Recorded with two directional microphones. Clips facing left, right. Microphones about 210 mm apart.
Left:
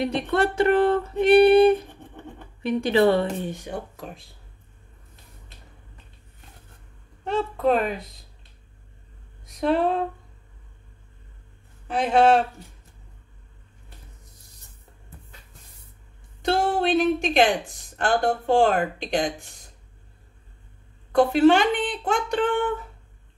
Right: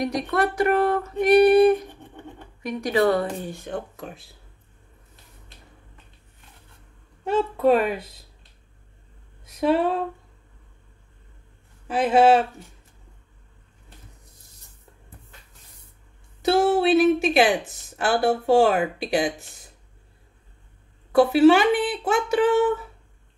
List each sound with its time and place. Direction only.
0.0 s a sound: 30° left (ahead or behind)
3.9 s speech: centre (ahead or behind)
7.2 s speech: centre (ahead or behind)
9.5 s speech: 5° right (ahead or behind)
11.9 s speech: 5° right (ahead or behind)
16.4 s speech: 5° right (ahead or behind)
21.1 s speech: 5° right (ahead or behind)